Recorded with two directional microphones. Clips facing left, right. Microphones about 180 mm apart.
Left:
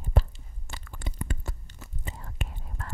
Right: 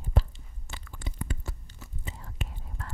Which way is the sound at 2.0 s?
55° left (ahead or behind).